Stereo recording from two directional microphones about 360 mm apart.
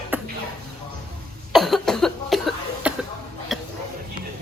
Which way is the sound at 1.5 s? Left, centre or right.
Centre.